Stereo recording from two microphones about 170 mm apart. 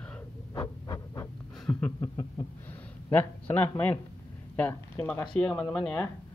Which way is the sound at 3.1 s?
10° left (ahead or behind).